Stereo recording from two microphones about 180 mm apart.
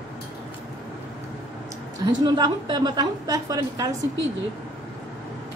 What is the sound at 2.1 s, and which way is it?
A woman's voice, 25° right (ahead or behind).